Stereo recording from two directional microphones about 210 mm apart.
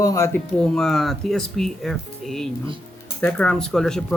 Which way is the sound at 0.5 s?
5° left (ahead or behind).